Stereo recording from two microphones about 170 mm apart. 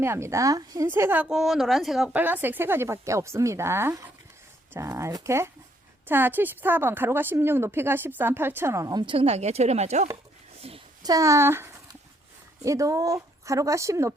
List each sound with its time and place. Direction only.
0.0 s a woman's voice: 15° right (ahead or behind); by 10.1 s 40° right (ahead or behind)
10.6 s a sound: 35° right (ahead or behind)
11.0 s speech: 20° right (ahead or behind)